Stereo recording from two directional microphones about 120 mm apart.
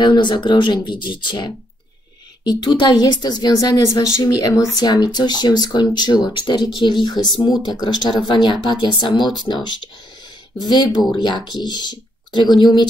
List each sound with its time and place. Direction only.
0.0 s a woman's voice: 40° left (ahead or behind)
10.6 s a woman's voice: 35° left (ahead or behind)